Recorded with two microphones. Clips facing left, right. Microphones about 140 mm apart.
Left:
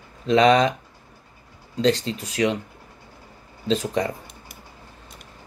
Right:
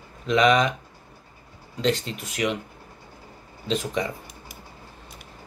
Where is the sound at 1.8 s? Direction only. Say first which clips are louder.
Left 4 dB; 35° left (ahead or behind).